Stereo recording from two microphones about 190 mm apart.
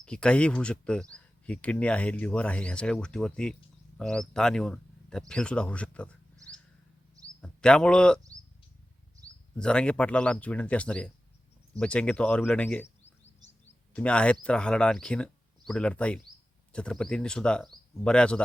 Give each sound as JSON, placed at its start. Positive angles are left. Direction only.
{"t": 0.0, "sound": "speech", "side_deg": 5}
{"t": 7.4, "sound": "speech", "side_deg": 5}
{"t": 9.6, "sound": "speech", "side_deg": 5}
{"t": 13.4, "sound": "a sound", "side_deg": -20}
{"t": 13.9, "sound": "speech", "side_deg": 5}